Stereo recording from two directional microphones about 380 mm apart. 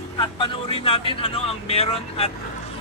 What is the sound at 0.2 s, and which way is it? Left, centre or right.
Speech, centre.